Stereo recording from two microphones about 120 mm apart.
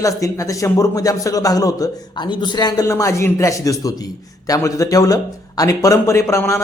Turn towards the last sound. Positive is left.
turn(degrees=25)  # may be behind; listen again after turning